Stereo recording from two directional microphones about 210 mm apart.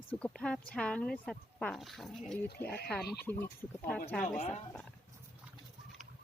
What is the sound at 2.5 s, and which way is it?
Speech, 50° left (ahead or behind).